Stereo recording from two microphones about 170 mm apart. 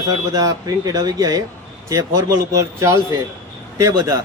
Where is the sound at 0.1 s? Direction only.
20° right (ahead or behind).